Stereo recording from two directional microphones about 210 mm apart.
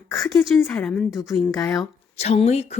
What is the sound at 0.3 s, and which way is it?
A woman's voice, centre (ahead or behind).